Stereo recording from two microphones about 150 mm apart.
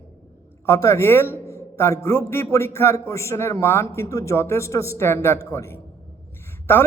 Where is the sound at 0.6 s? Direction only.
20° left (ahead or behind).